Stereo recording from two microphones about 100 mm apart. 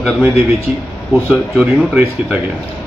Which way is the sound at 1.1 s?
Centre (ahead or behind).